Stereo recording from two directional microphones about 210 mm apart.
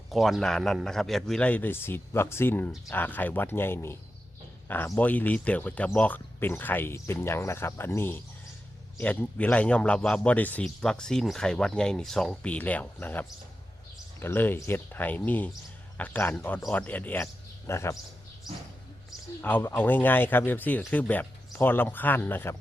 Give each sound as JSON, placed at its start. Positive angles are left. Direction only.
{"t": 0.1, "sound": "a man's voice", "side_deg": 0}
{"t": 19.4, "sound": "a man's voice", "side_deg": 10}